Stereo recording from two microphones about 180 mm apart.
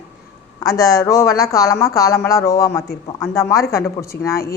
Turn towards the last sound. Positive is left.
turn(degrees=15)  # may be behind; listen again after turning